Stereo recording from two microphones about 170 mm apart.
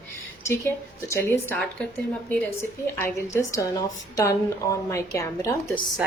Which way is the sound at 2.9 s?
15° left (ahead or behind).